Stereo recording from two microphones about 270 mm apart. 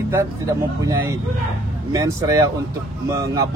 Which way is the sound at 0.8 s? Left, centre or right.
Centre.